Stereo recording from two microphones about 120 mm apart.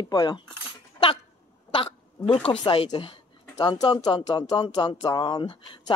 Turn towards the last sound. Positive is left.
turn(degrees=40)  # may be behind; listen again after turning